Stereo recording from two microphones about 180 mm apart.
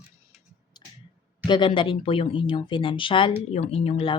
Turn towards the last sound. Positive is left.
turn(degrees=30)  # may be behind; listen again after turning